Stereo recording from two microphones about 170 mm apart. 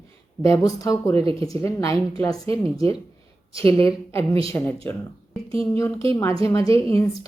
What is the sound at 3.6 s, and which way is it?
A woman's voice, 15° left (ahead or behind).